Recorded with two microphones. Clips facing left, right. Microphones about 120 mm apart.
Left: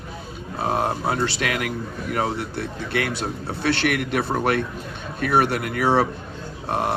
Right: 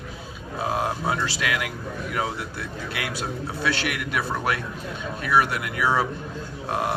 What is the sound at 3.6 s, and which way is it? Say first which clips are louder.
Speech: left 6 dB; 55° left (ahead or behind).